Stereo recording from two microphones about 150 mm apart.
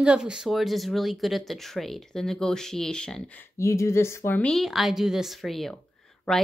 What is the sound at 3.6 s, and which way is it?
Speech, 20° left (ahead or behind).